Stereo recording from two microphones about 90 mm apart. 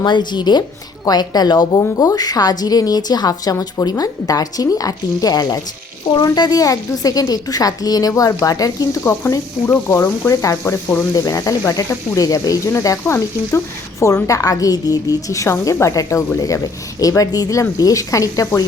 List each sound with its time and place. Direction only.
0.0 s a woman's voice: 55° left (ahead or behind); by 11.0 s 25° left (ahead or behind)
11.2 s speech: 40° left (ahead or behind)